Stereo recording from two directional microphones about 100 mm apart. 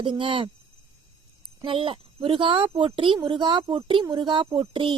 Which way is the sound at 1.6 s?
65° right (ahead or behind).